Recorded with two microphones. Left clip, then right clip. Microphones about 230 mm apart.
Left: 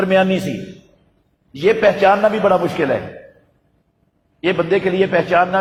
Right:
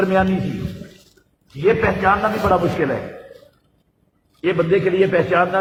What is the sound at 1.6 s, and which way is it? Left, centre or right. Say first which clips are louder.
A man's voice: left 4 dB; left.